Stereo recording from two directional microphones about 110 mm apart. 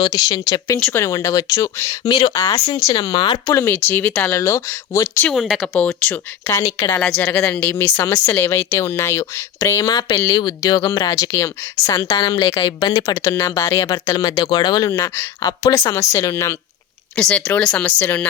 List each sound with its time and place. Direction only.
0.0 s speech: 35° left (ahead or behind)
3.5 s speech: 20° left (ahead or behind)
4.3 s speech: 25° left (ahead or behind)
5.3 s speech: centre (ahead or behind)
6.5 s speech: 30° left (ahead or behind)
7.5 s speech: 15° left (ahead or behind)
7.9 s speech: 35° left (ahead or behind)
8.1 s speech: 20° left (ahead or behind)
12.1 s speech: 40° left (ahead or behind)
13.2 s speech: 25° left (ahead or behind)
13.8 s speech: 35° left (ahead or behind)
17.2 s speech: 10° left (ahead or behind)